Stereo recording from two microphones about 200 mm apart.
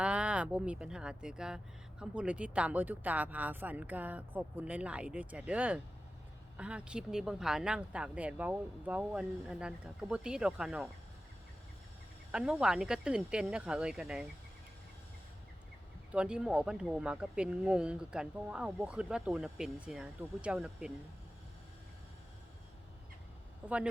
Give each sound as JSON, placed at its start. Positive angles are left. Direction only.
{"t": 0.0, "sound": "speech", "side_deg": -5}
{"t": 12.3, "sound": "speech", "side_deg": -5}
{"t": 16.1, "sound": "speech", "side_deg": -5}
{"t": 23.6, "sound": "speech", "side_deg": -5}